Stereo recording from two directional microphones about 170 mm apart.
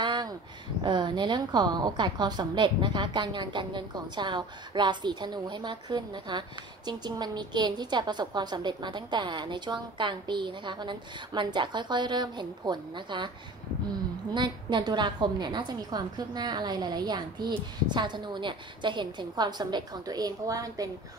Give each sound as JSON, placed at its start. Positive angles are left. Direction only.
{"t": 0.0, "sound": "a sound", "side_deg": -25}
{"t": 0.8, "sound": "a woman's voice", "side_deg": -25}
{"t": 14.3, "sound": "a woman's voice", "side_deg": -25}